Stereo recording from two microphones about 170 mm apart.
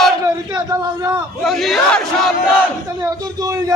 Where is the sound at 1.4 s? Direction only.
Centre (ahead or behind).